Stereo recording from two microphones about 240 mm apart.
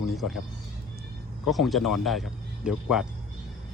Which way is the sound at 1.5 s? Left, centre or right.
Centre.